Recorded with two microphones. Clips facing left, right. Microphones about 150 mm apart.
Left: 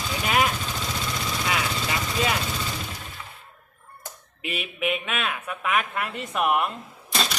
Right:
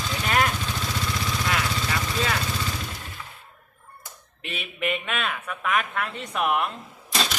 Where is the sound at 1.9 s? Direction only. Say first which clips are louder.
Left 3 dB; 20° left (ahead or behind).